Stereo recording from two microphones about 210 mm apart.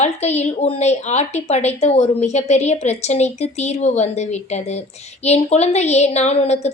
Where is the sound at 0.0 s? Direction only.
30° left (ahead or behind).